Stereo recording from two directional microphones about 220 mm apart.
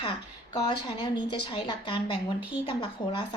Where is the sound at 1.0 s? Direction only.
20° left (ahead or behind).